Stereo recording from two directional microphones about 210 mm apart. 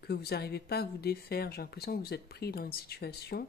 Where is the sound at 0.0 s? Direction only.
50° left (ahead or behind).